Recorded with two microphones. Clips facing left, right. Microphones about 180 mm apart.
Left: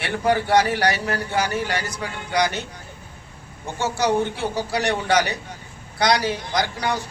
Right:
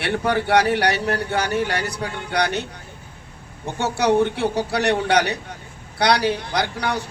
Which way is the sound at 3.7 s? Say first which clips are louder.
Right 3 dB; 65° right (ahead or behind).